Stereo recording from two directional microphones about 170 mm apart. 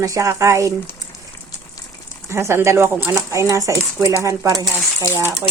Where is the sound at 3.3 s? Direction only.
15° right (ahead or behind).